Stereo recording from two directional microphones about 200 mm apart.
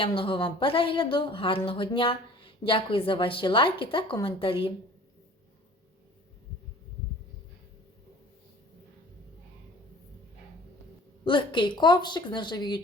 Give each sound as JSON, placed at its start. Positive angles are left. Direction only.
{"t": 0.0, "sound": "a woman's voice", "side_deg": 25}
{"t": 11.3, "sound": "a woman's voice", "side_deg": 25}